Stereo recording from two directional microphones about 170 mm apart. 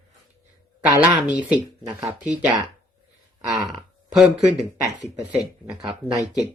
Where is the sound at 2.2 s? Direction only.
5° right (ahead or behind).